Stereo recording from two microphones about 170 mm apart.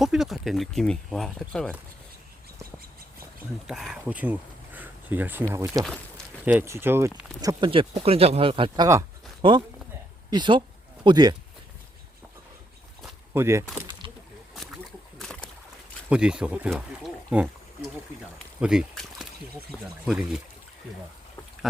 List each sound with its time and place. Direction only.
0.0 s speech: centre (ahead or behind)
3.7 s speech: centre (ahead or behind)
7.6 s speech: 30° right (ahead or behind)
13.3 s speech: 15° right (ahead or behind)
15.2 s a sound: 5° left (ahead or behind)
16.0 s speech: 5° right (ahead or behind)